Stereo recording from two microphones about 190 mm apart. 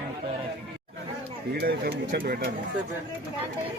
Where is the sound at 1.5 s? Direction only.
55° right (ahead or behind).